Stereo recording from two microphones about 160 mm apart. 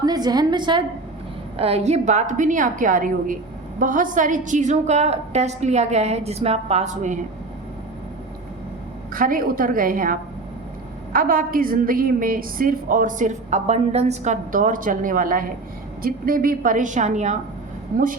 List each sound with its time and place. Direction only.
0.0 s a woman's voice: 25° right (ahead or behind)
1.5 s a woman's voice: 40° right (ahead or behind)
9.1 s a woman's voice: 60° right (ahead or behind)
17.9 s a woman's voice: 60° right (ahead or behind)